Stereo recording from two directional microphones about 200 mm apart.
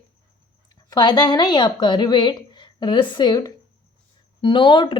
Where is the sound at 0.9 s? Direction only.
20° left (ahead or behind).